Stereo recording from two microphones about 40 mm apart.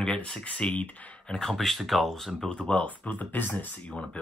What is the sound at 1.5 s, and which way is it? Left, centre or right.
Speech, centre.